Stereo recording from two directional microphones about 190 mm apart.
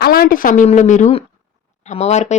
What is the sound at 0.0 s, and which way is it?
A woman's voice, 50° left (ahead or behind).